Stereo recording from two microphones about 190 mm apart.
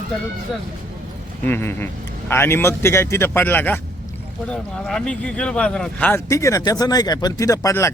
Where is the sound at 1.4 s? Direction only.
10° left (ahead or behind).